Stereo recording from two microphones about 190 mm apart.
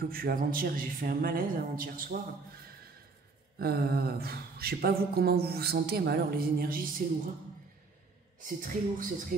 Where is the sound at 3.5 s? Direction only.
55° right (ahead or behind).